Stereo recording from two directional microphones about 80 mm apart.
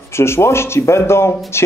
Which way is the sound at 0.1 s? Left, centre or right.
Left.